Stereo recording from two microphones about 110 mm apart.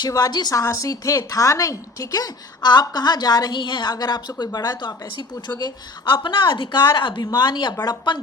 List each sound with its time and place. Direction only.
0.0 s a woman's voice: 35° left (ahead or behind)